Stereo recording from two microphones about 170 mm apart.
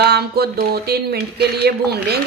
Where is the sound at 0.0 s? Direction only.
70° right (ahead or behind).